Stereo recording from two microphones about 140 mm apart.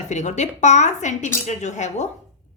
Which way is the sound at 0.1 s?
55° left (ahead or behind).